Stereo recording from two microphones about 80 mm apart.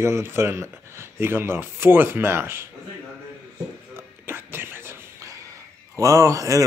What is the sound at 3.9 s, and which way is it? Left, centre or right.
Music, right.